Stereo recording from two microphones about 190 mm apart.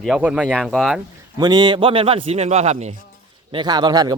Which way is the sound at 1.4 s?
25° right (ahead or behind).